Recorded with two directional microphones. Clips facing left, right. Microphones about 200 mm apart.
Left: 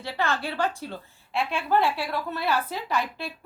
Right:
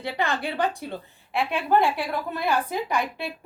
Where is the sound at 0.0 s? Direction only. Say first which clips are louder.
Right 1 dB; 15° right (ahead or behind).